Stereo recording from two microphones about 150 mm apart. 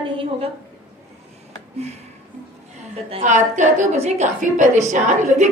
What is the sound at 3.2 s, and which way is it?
A woman's voice, 55° right (ahead or behind).